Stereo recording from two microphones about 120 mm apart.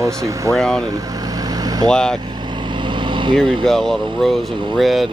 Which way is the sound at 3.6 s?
5° left (ahead or behind).